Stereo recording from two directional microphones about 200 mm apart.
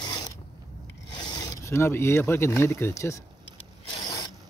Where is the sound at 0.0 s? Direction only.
20° left (ahead or behind).